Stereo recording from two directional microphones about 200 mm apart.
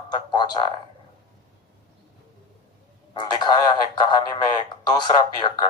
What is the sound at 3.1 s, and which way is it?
A man's voice, 20° left (ahead or behind).